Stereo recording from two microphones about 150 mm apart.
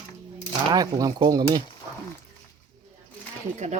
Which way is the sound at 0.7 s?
25° right (ahead or behind).